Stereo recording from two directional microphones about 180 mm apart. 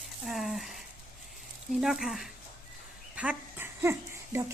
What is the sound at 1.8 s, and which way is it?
Speech, centre (ahead or behind).